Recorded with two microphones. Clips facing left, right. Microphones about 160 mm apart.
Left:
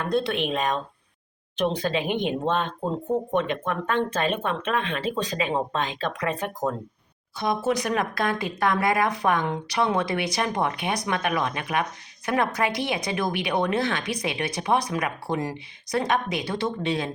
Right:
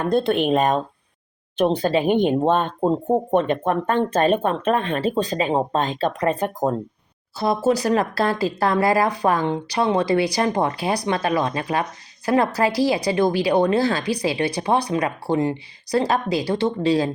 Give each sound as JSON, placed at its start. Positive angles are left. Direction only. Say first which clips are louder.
{"t": 0.3, "sound": "speech", "louder": "right 7 dB", "side_deg": -45}